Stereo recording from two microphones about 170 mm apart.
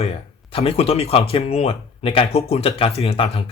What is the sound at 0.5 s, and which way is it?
Speech, 35° left (ahead or behind).